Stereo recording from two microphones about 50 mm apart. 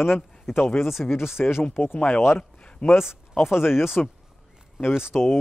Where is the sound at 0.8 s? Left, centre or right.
Centre.